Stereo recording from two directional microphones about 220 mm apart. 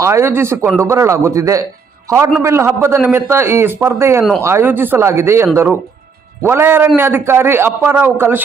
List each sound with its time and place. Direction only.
0.0 s a man's voice: 10° right (ahead or behind)
4.2 s a man's voice: centre (ahead or behind)